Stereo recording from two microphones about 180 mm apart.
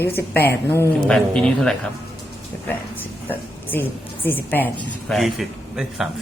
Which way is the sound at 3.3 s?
10° left (ahead or behind).